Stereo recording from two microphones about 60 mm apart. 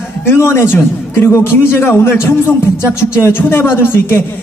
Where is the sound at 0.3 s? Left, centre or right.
Left.